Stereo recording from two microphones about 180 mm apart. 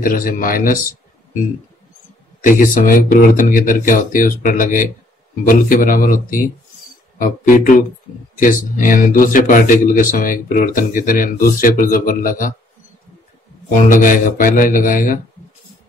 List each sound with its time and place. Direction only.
0.0 s a man's voice: 50° left (ahead or behind)
2.4 s a man's voice: 45° left (ahead or behind)
13.7 s a man's voice: 50° left (ahead or behind)